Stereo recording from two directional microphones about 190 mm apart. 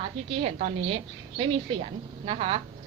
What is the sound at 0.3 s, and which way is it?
A woman's voice, 30° right (ahead or behind).